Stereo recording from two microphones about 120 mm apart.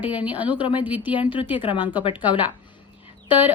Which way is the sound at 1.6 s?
40° left (ahead or behind).